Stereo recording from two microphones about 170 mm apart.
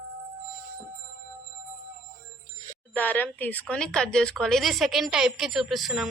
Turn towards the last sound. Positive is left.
turn(degrees=0)  # may be behind; listen again after turning